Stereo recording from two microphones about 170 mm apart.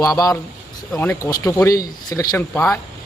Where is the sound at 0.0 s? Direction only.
20° left (ahead or behind).